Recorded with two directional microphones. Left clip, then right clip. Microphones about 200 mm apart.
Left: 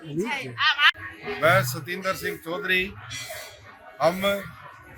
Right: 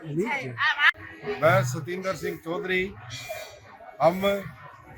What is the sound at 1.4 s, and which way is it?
Speech, 25° left (ahead or behind).